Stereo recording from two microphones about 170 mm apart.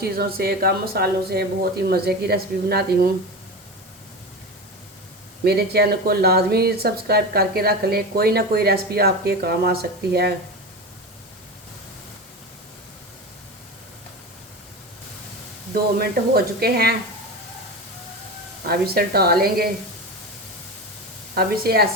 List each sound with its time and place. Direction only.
0.0 s speech: 65° right (ahead or behind)
5.5 s speech: 70° right (ahead or behind)
15.7 s speech: 65° right (ahead or behind)
18.6 s speech: 65° right (ahead or behind)
21.3 s speech: 65° right (ahead or behind)